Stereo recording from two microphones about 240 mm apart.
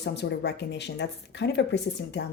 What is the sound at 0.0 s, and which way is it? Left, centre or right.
Speech, left.